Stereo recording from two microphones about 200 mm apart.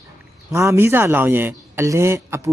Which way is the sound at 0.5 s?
15° right (ahead or behind).